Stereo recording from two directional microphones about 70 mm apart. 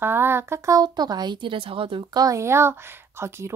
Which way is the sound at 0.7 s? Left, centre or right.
Right.